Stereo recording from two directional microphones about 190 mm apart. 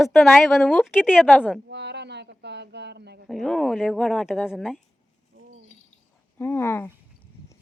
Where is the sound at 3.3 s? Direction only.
Centre (ahead or behind).